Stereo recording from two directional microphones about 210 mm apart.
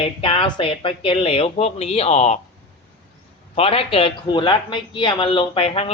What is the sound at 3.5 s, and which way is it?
Speech, 25° left (ahead or behind).